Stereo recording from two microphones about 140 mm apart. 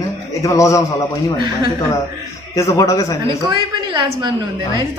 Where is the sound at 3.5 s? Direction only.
35° right (ahead or behind).